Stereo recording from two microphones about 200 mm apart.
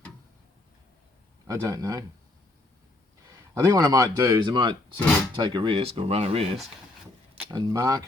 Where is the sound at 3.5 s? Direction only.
20° right (ahead or behind).